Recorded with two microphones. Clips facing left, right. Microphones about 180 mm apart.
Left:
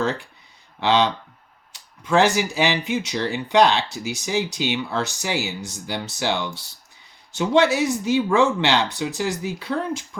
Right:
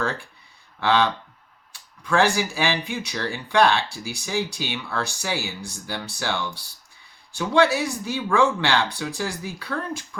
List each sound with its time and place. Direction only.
0.8 s speech: 20° left (ahead or behind)